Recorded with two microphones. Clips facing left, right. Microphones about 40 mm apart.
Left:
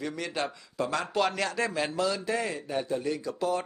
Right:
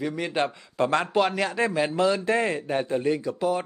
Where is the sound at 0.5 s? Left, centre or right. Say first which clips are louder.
Right 7 dB; right.